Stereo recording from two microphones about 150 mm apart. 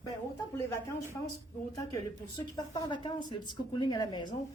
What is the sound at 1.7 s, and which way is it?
Speech, 25° left (ahead or behind).